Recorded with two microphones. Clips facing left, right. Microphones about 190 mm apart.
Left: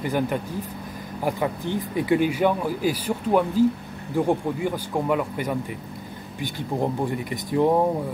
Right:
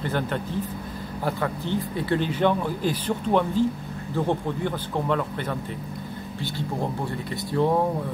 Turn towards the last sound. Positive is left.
turn(degrees=15)  # may be behind; listen again after turning